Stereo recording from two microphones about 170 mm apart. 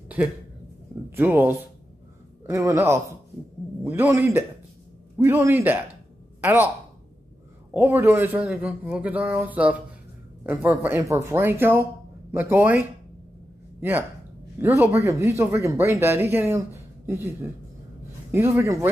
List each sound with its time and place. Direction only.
0.2 s speech: 10° right (ahead or behind)
7.7 s speech: 10° right (ahead or behind)
18.3 s speech: 15° right (ahead or behind)